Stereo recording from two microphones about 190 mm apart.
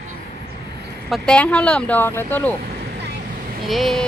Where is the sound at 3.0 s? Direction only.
60° right (ahead or behind).